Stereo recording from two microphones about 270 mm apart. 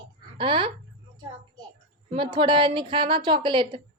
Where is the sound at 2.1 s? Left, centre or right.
Centre.